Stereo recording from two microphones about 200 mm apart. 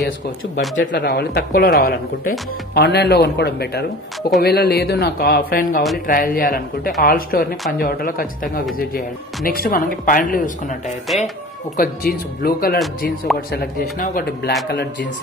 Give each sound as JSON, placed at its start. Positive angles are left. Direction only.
{"t": 0.9, "sound": "speech", "side_deg": 55}
{"t": 9.5, "sound": "speech", "side_deg": 45}
{"t": 11.1, "sound": "speech", "side_deg": 0}
{"t": 11.7, "sound": "speech", "side_deg": 45}